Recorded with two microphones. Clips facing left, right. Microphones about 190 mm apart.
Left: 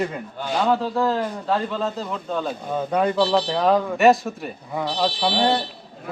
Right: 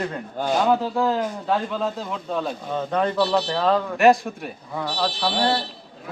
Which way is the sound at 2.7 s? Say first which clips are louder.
Left 2 dB; 10° left (ahead or behind).